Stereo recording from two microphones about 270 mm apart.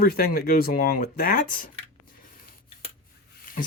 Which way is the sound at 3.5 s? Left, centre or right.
Left.